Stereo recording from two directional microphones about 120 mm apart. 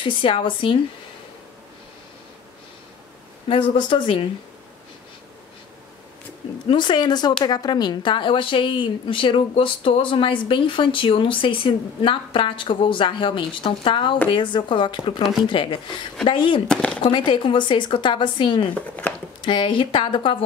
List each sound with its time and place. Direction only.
0.0 s a woman's voice: 45° left (ahead or behind)
3.4 s a woman's voice: 45° left (ahead or behind)
6.7 s a woman's voice: 40° left (ahead or behind)
16.6 s speech: 5° left (ahead or behind)
17.0 s speech: 40° left (ahead or behind)
18.8 s speech: 15° left (ahead or behind)
19.4 s a woman's voice: 45° left (ahead or behind)